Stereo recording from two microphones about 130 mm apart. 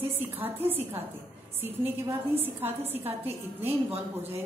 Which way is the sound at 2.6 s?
15° right (ahead or behind).